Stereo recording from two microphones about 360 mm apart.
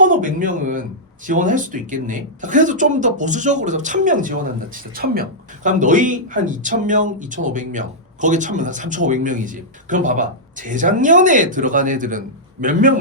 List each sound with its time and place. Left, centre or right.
0.0 s speech: right